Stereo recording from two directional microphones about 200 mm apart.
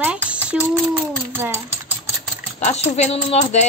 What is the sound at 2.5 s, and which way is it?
A woman's voice, 35° left (ahead or behind).